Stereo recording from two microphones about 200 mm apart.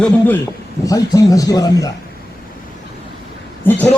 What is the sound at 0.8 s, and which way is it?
A man's voice, 15° left (ahead or behind).